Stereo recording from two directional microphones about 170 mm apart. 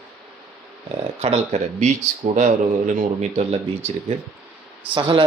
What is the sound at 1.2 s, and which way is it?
Speech, 35° right (ahead or behind).